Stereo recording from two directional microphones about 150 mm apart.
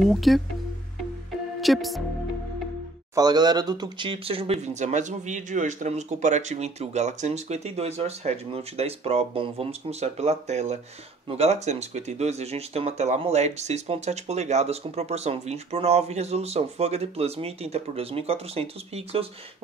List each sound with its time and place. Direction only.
0.0 s speech: centre (ahead or behind)
1.6 s speech: centre (ahead or behind)
3.2 s speech: 30° right (ahead or behind)